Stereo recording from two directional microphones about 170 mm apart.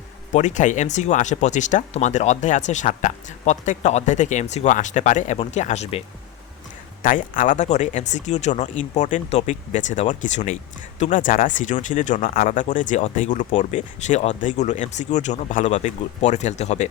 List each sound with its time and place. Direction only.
0.3 s speech: 45° left (ahead or behind)
7.0 s speech: 55° left (ahead or behind)